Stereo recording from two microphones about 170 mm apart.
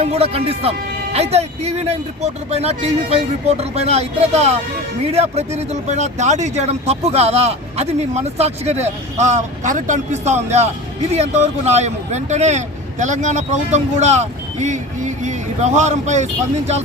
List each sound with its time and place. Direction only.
0.0 s speech: 35° right (ahead or behind)